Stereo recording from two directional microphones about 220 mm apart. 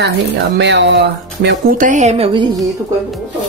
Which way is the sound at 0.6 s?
50° right (ahead or behind).